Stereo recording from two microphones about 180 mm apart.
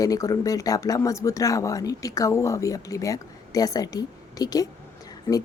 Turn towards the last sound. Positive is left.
turn(degrees=15)  # may be behind; listen again after turning